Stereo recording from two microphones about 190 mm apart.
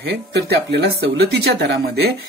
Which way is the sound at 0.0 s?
60° right (ahead or behind).